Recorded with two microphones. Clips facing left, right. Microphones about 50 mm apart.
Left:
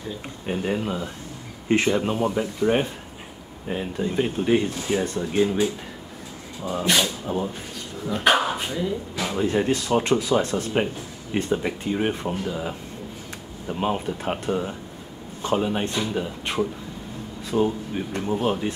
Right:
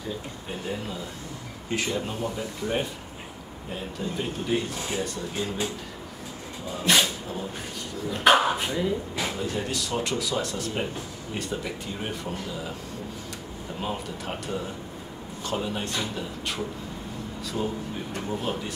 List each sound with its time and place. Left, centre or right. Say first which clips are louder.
0.7 s speech: left 6 dB; left
6.8 s speech: even; centre
7.3 s speech: left 8 dB; left
8.1 s speech: even; centre
9.4 s speech: left 7 dB; left
13.7 s speech: left 7 dB; left